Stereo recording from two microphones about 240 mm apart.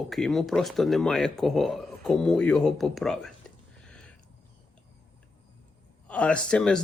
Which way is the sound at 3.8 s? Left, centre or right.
Centre.